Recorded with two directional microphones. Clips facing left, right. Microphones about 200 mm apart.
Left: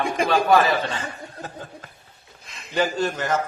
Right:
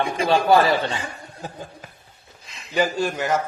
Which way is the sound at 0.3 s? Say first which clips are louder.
Right 2 dB; 30° right (ahead or behind).